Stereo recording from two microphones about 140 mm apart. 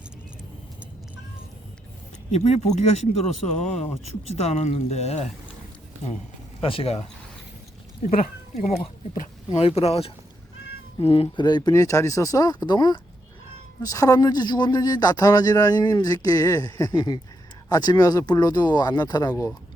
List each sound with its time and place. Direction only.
2.3 s speech: 50° left (ahead or behind)
6.7 s speech: 45° left (ahead or behind)
9.6 s speech: 45° left (ahead or behind); by 19.5 s 25° left (ahead or behind)